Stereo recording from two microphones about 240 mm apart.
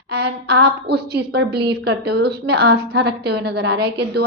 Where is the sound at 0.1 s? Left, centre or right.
Right.